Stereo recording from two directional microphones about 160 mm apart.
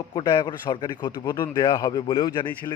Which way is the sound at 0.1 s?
30° left (ahead or behind).